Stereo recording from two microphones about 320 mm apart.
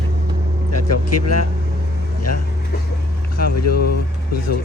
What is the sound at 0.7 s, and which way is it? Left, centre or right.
Vehicle, left.